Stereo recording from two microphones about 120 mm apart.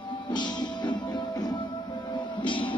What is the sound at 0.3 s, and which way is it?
Music, 40° left (ahead or behind).